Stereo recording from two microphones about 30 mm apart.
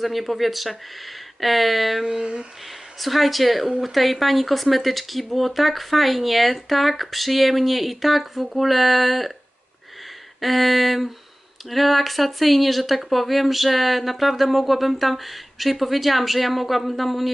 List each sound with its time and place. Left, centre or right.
0.0 s speech: centre
2.0 s humming: right
3.0 s speech: centre
10.4 s speech: centre